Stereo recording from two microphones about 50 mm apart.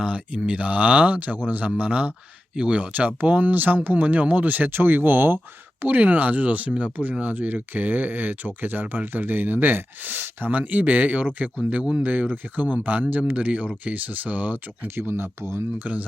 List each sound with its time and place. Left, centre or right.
0.0 s speech: centre; by 14.8 s right
14.8 s speech: right
15.8 s speech: right